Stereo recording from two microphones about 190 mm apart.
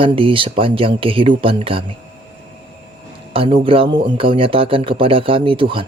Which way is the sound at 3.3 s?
30° right (ahead or behind).